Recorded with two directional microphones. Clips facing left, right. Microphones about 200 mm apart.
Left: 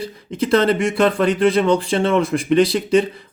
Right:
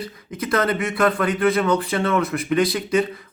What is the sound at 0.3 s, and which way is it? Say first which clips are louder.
Speech: left 5 dB; 30° left (ahead or behind).